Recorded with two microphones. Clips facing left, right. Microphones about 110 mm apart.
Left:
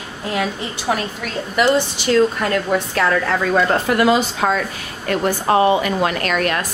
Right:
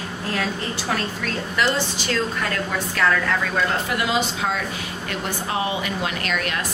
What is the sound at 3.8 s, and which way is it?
Speech, 50° left (ahead or behind).